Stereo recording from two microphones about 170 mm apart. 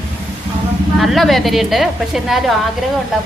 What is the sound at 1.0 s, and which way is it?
A woman's voice, centre (ahead or behind).